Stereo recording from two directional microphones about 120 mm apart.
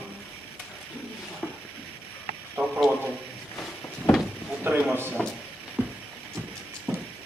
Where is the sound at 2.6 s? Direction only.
20° right (ahead or behind).